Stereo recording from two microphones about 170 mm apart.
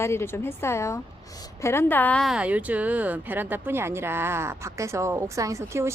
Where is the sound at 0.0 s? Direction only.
15° left (ahead or behind).